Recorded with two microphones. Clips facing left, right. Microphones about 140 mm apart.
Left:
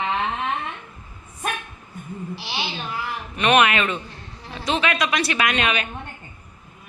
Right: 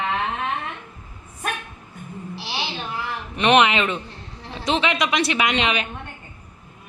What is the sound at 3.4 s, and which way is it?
A woman's voice, 25° right (ahead or behind).